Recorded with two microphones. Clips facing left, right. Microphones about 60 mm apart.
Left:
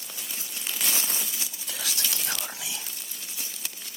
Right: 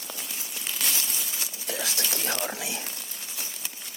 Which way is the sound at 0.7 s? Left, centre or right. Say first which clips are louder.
Even; centre.